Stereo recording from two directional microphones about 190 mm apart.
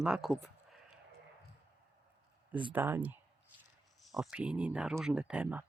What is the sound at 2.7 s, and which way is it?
Speech, 10° right (ahead or behind).